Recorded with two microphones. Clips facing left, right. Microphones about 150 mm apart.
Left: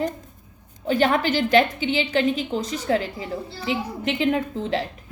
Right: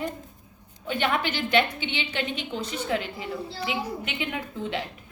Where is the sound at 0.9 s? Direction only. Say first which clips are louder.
Left 6 dB; 40° left (ahead or behind).